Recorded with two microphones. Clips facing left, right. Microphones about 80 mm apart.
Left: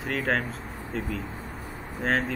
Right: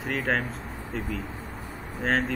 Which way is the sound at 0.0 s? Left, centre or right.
Centre.